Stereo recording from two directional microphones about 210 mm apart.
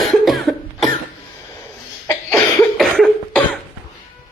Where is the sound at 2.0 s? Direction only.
10° left (ahead or behind).